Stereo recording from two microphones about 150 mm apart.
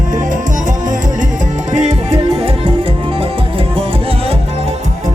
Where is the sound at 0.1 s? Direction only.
60° right (ahead or behind).